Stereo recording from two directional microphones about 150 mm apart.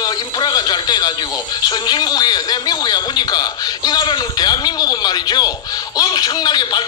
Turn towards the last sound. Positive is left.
turn(degrees=30)  # may be behind; listen again after turning